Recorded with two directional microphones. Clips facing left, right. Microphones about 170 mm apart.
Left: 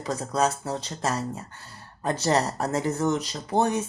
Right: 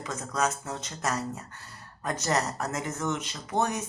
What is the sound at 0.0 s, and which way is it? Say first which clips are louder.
Speech: left 5 dB; 35° left (ahead or behind).